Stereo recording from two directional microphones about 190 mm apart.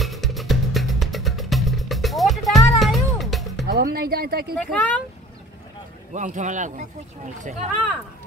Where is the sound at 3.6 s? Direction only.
55° right (ahead or behind).